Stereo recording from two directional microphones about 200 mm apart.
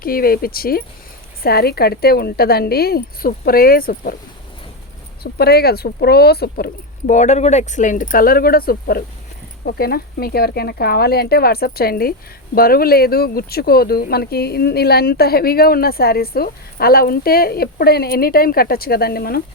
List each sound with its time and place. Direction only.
0.0 s speech: 45° left (ahead or behind)
5.2 s speech: 50° left (ahead or behind)
7.1 s speech: 35° left (ahead or behind)